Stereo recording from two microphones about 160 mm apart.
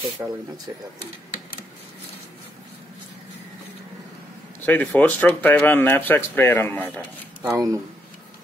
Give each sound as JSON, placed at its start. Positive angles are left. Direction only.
{"t": 0.2, "sound": "speech", "side_deg": -15}
{"t": 4.6, "sound": "speech", "side_deg": 10}
{"t": 7.4, "sound": "speech", "side_deg": -20}